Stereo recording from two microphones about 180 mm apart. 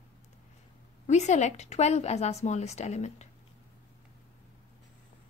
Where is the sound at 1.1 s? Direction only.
40° left (ahead or behind).